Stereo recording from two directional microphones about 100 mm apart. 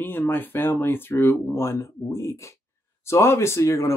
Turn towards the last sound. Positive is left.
turn(degrees=30)  # may be behind; listen again after turning